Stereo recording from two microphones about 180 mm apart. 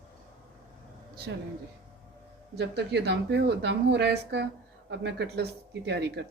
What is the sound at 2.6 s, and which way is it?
A woman's voice, 70° right (ahead or behind).